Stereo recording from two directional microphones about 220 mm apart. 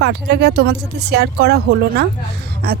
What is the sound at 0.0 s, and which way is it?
Speech, 50° right (ahead or behind).